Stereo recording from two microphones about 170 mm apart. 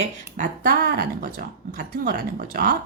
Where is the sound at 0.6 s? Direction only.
60° right (ahead or behind).